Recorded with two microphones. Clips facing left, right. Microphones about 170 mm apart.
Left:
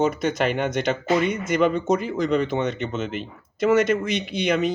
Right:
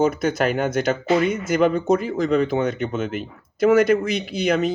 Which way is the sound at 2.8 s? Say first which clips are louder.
Right 3 dB; 50° right (ahead or behind).